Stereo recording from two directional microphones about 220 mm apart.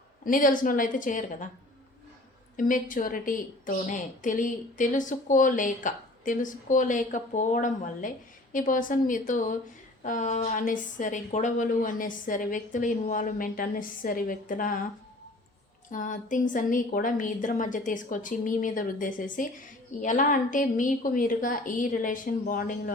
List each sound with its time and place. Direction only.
0.3 s a woman's voice: 40° left (ahead or behind)
2.6 s a woman's voice: 35° left (ahead or behind)
15.9 s a woman's voice: 35° left (ahead or behind)